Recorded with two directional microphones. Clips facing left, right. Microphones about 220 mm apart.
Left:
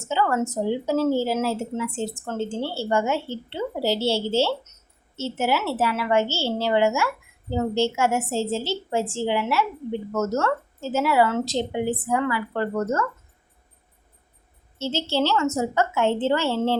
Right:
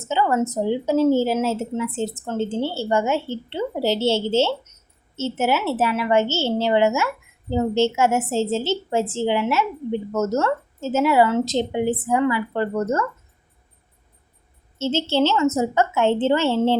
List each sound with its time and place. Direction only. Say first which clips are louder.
0.1 s a woman's voice: right 2 dB; 20° right (ahead or behind)
14.9 s a woman's voice: right 3 dB; 20° right (ahead or behind)